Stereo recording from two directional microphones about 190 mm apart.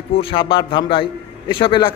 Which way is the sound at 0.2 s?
25° left (ahead or behind).